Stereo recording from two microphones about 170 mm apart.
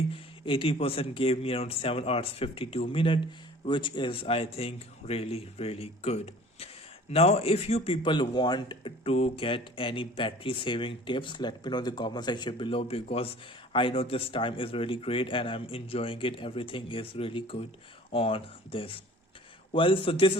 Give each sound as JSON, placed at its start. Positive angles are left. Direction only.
{"t": 0.1, "sound": "a man's voice", "side_deg": 30}